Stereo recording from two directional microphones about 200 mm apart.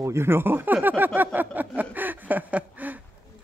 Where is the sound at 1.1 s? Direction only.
10° right (ahead or behind).